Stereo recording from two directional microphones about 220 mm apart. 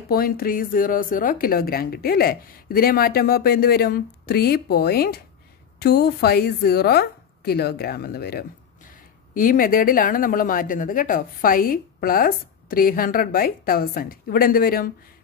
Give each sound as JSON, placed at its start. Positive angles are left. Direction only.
{"t": 0.1, "sound": "speech", "side_deg": 40}